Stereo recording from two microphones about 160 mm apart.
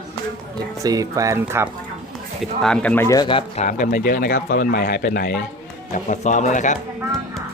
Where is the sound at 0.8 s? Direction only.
20° right (ahead or behind).